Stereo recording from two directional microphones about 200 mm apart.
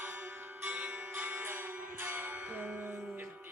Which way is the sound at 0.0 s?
10° right (ahead or behind).